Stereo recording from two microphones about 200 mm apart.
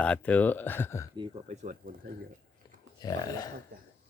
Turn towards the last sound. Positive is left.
turn(degrees=20)  # may be behind; listen again after turning